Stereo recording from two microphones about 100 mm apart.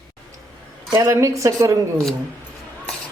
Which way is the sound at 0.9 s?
30° right (ahead or behind).